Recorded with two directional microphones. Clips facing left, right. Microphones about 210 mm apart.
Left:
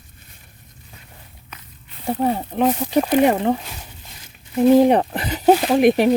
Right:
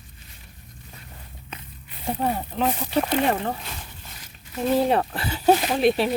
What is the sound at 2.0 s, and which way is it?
Speech, 15° left (ahead or behind).